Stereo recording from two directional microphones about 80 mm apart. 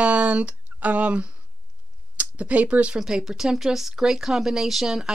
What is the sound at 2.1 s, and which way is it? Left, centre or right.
Speech, centre.